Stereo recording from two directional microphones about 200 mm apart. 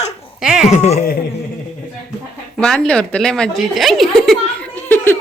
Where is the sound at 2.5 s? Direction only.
Centre (ahead or behind).